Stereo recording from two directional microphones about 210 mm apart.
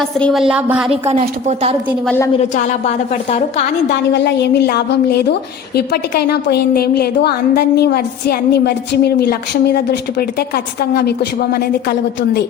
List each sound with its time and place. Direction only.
0.0 s a woman's voice: centre (ahead or behind)
1.0 s a woman's voice: 30° right (ahead or behind)
2.0 s a woman's voice: 10° left (ahead or behind)
2.4 s a woman's voice: 30° left (ahead or behind)
4.1 s a woman's voice: 55° left (ahead or behind)